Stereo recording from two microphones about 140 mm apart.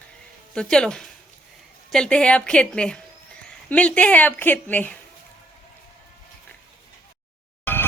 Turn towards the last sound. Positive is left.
turn(degrees=15)  # may be behind; listen again after turning